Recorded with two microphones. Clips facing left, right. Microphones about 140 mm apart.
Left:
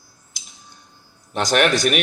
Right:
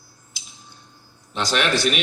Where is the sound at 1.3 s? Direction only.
50° left (ahead or behind).